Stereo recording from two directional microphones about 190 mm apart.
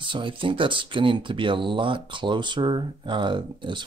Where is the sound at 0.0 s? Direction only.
25° right (ahead or behind).